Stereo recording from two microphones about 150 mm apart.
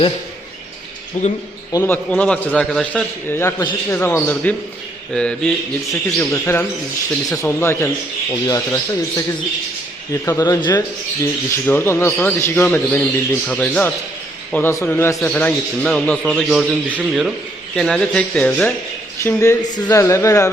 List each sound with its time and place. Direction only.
1.2 s speech: 55° left (ahead or behind)
1.7 s speech: 15° left (ahead or behind)
5.9 s a man's voice: 15° left (ahead or behind)
19.2 s speech: 20° left (ahead or behind)